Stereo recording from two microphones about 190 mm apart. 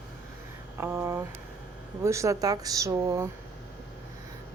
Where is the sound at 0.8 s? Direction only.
10° right (ahead or behind).